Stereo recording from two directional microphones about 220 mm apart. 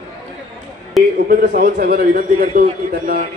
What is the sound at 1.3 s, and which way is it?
A man's voice, 40° right (ahead or behind).